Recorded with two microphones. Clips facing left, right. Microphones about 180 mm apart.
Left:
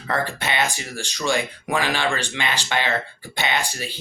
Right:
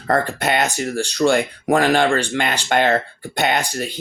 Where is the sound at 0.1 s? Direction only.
50° right (ahead or behind).